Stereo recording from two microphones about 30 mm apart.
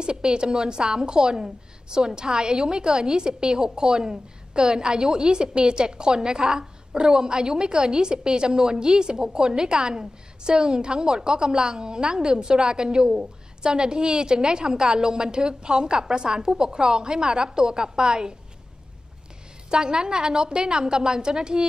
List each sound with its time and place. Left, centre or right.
0.0 s a woman's voice: right
6.3 s a woman's voice: centre
19.7 s a woman's voice: right